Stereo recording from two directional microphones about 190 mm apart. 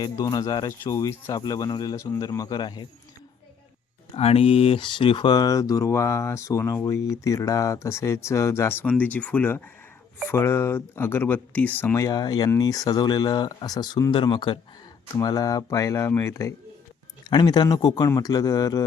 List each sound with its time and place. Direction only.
0.0 s speech: 20° left (ahead or behind)
4.1 s speech: 30° left (ahead or behind)